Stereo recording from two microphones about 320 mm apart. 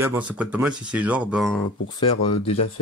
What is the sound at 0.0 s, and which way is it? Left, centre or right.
Speech, centre.